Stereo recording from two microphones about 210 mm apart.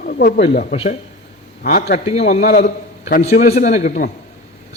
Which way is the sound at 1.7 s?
45° left (ahead or behind).